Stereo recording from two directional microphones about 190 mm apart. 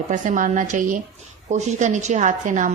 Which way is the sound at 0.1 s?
40° right (ahead or behind).